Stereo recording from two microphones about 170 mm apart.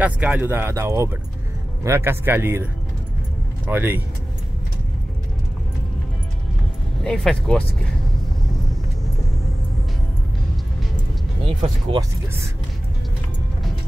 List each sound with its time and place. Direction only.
0.0 s speech: 10° right (ahead or behind)
3.6 s speech: 10° right (ahead or behind)
7.0 s speech: 5° left (ahead or behind)
11.4 s speech: 35° right (ahead or behind)